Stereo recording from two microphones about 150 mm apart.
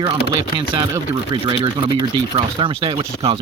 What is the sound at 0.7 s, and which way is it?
Speech, 30° right (ahead or behind).